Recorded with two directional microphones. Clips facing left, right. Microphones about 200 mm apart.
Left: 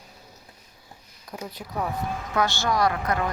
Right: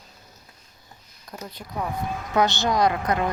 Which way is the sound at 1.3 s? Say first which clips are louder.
Left 2 dB; 5° left (ahead or behind).